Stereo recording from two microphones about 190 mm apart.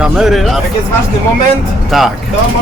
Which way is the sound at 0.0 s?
Centre (ahead or behind).